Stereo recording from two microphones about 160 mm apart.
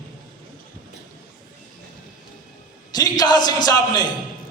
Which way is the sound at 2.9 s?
25° left (ahead or behind).